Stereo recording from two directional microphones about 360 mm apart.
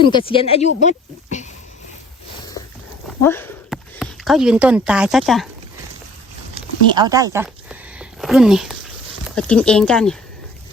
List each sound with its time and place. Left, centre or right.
0.0 s speech: centre
3.2 s speech: centre
6.5 s a sound: centre
9.3 s speech: centre